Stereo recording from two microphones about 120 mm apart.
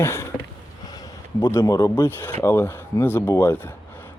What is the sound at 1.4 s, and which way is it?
Speech, 25° left (ahead or behind).